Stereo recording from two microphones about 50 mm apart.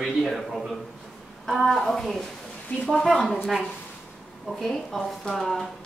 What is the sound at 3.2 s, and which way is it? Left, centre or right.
Speech, centre.